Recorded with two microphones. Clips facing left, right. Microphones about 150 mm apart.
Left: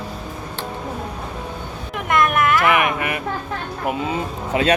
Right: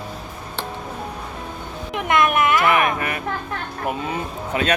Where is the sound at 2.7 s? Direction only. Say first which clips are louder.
Even; 15° left (ahead or behind).